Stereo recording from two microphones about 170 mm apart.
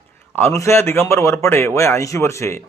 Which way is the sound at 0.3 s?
15° left (ahead or behind).